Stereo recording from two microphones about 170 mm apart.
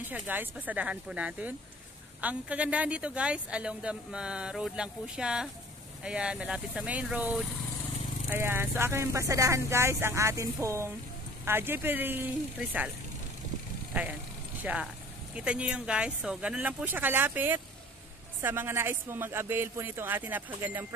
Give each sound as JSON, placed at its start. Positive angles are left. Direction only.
{"t": 0.1, "sound": "speech", "side_deg": -10}
{"t": 14.6, "sound": "speech", "side_deg": -10}